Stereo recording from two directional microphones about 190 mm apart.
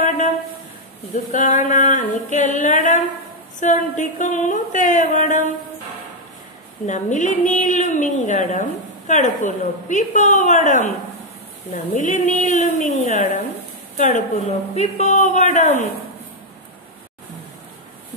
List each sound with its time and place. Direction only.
1.1 s a woman's voice: 40° left (ahead or behind)
6.9 s a woman's voice: 40° left (ahead or behind)